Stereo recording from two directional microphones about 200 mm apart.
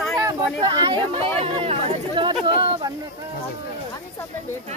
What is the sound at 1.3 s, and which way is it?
Chatter, 25° right (ahead or behind).